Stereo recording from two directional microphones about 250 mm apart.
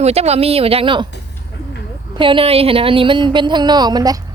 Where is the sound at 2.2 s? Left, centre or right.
Right.